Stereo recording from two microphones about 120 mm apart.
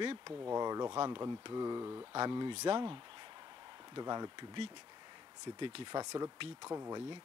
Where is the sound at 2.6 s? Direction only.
45° right (ahead or behind).